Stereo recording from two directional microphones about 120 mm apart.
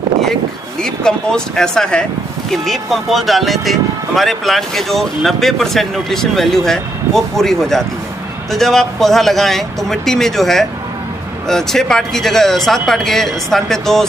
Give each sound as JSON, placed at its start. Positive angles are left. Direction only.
{"t": 0.8, "sound": "speech", "side_deg": 5}